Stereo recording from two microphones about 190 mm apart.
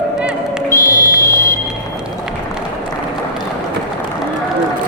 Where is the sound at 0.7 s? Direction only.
15° left (ahead or behind).